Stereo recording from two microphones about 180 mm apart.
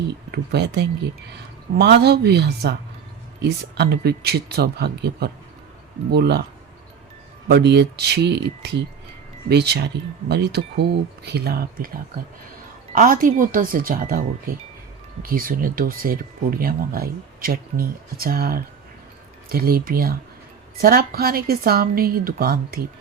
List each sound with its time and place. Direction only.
0.3 s a woman's voice: 65° right (ahead or behind)
7.4 s a woman's voice: 65° right (ahead or behind)
12.9 s a woman's voice: 50° right (ahead or behind)